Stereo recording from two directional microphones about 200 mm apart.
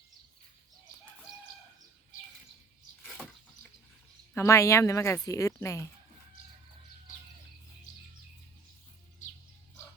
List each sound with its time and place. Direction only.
4.4 s speech: 15° left (ahead or behind)
7.9 s bird: 40° left (ahead or behind)